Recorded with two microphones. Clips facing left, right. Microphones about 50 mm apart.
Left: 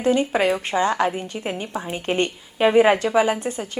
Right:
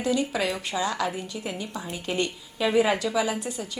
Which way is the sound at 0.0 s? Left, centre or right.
Left.